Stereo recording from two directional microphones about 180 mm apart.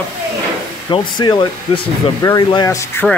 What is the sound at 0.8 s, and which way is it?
Speech, 25° left (ahead or behind).